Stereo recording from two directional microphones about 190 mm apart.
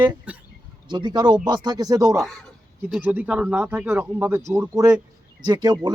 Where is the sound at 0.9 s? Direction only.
20° right (ahead or behind).